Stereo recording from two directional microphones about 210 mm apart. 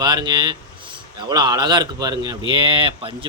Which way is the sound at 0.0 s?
20° right (ahead or behind).